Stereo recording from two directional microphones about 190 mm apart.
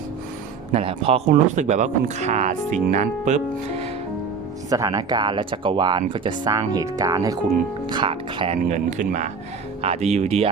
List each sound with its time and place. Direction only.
0.7 s speech: 30° right (ahead or behind)
4.7 s speech: 20° right (ahead or behind)